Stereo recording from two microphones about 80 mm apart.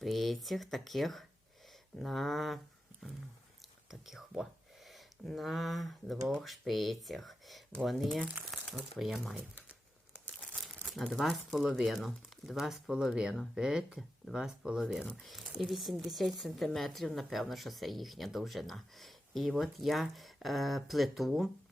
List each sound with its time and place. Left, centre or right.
0.0 s speech: centre
4.0 s speech: centre
9.4 s crumpling: centre
10.5 s crumpling: centre
10.8 s speech: centre